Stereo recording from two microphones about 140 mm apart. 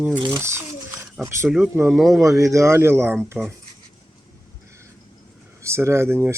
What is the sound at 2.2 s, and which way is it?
Speech, 20° right (ahead or behind).